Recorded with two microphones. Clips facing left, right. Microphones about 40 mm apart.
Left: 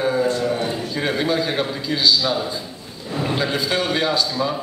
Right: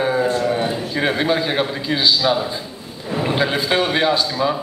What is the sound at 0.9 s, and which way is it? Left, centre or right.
A man's voice, right.